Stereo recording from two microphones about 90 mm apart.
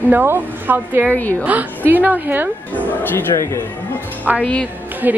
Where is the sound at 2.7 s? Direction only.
25° left (ahead or behind).